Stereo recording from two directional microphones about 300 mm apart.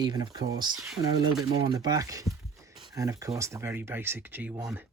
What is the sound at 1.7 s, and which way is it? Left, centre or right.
Speech, centre.